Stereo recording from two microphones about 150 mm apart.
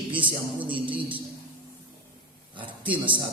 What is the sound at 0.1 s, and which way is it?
A man's voice, 35° right (ahead or behind).